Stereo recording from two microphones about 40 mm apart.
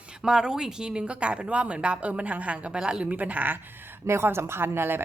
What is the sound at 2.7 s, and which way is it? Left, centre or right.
Speech, centre.